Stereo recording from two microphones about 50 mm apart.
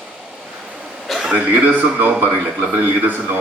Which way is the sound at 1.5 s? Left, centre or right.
Right.